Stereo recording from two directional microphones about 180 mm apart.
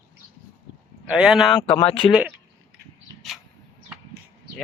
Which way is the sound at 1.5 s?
25° left (ahead or behind).